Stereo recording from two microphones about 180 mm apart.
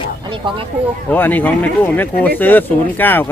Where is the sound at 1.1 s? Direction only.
10° left (ahead or behind).